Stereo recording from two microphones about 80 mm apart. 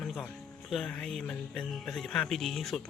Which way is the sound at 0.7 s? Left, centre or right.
Centre.